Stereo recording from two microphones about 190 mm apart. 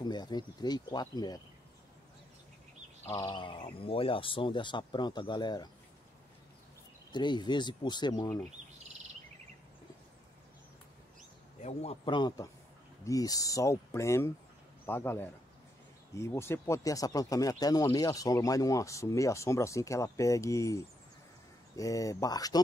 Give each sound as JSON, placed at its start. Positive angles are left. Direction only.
{"t": 0.0, "sound": "speech", "side_deg": 20}
{"t": 3.1, "sound": "speech", "side_deg": 20}
{"t": 7.1, "sound": "speech", "side_deg": 25}
{"t": 11.6, "sound": "speech", "side_deg": 35}